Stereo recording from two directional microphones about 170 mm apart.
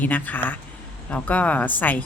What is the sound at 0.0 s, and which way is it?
Speech, 10° left (ahead or behind).